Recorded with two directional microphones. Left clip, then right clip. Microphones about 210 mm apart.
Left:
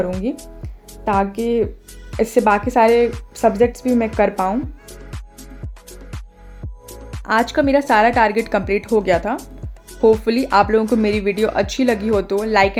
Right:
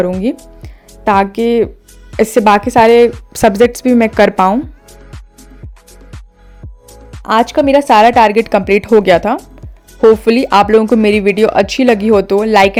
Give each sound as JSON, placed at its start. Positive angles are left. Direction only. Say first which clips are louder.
{"t": 0.6, "sound": "music", "louder": "right 9 dB", "side_deg": -30}
{"t": 2.1, "sound": "speech", "louder": "right 6 dB", "side_deg": -30}
{"t": 3.3, "sound": "speech", "louder": "right 5 dB", "side_deg": -40}
{"t": 6.8, "sound": "music", "louder": "even", "side_deg": 0}
{"t": 7.3, "sound": "speech", "louder": "right 6 dB", "side_deg": -25}